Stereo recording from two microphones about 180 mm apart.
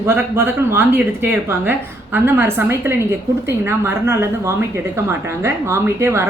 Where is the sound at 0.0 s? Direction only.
15° right (ahead or behind).